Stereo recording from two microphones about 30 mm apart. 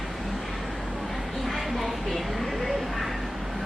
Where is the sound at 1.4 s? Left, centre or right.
Centre.